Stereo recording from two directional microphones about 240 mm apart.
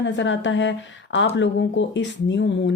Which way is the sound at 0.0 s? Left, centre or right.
Left.